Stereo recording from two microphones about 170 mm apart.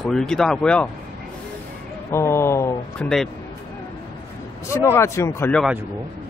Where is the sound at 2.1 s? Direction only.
15° left (ahead or behind).